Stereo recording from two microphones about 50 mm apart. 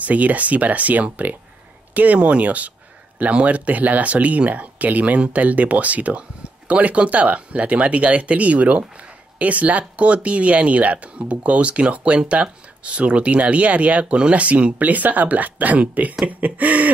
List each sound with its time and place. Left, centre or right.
0.0 s speech: right